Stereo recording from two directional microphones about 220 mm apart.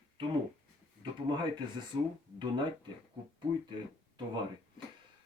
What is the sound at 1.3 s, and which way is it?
Speech, 20° right (ahead or behind).